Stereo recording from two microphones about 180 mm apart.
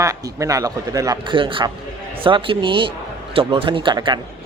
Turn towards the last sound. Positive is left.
turn(degrees=-25)  # may be behind; listen again after turning